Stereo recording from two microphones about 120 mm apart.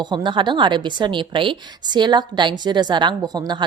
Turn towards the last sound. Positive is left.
turn(degrees=-35)  # may be behind; listen again after turning